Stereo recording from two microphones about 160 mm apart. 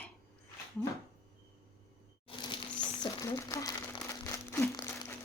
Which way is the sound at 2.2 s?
30° left (ahead or behind).